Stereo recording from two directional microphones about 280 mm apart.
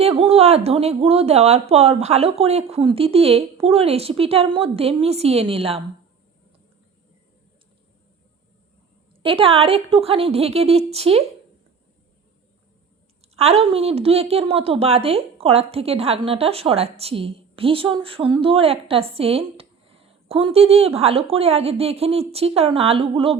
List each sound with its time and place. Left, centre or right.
0.0 s a woman's voice: right
9.2 s a woman's voice: centre
13.3 s a woman's voice: right